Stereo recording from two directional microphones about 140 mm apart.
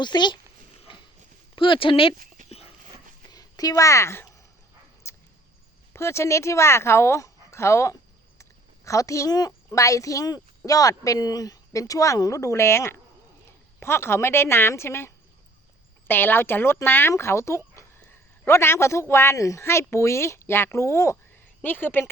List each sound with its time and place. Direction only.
0.0 s speech: 30° left (ahead or behind)
0.9 s walk: 35° left (ahead or behind)
1.5 s speech: 35° left (ahead or behind)
2.1 s dog: 90° right
2.5 s dog: 45° left (ahead or behind)
3.2 s a woman's voice: 30° left (ahead or behind)
5.0 s a sound: 20° left (ahead or behind)
5.9 s a woman's voice: 20° left (ahead or behind)
8.4 s a sound: 20° left (ahead or behind)
9.5 s a woman's voice: 20° left (ahead or behind)